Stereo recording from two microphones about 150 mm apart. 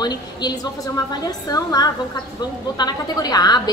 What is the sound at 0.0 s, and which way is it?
A woman's voice, 25° left (ahead or behind).